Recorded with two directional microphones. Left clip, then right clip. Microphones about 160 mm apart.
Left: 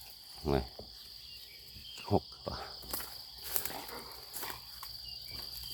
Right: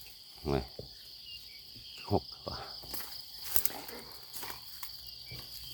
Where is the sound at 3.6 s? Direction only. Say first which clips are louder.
Even; 15° left (ahead or behind).